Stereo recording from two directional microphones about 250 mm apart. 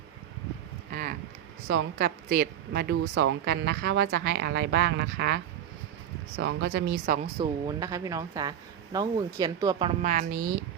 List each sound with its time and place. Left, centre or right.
0.9 s a sound: right
1.6 s speech: right
7.3 s speech: centre; by 10.5 s right